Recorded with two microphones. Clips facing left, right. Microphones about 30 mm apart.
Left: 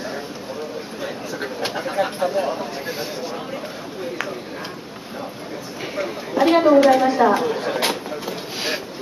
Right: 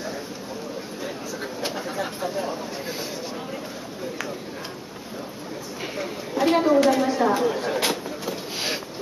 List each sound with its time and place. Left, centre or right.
1.0 s bird: left
5.9 s a woman's voice: centre
7.4 s a sound: centre